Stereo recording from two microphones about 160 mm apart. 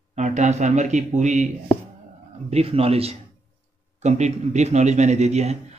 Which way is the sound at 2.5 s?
40° right (ahead or behind).